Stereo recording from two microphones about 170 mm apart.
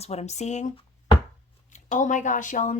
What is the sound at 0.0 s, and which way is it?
Speech, 40° left (ahead or behind).